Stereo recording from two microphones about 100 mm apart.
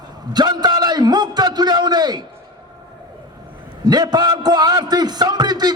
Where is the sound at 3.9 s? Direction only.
45° right (ahead or behind).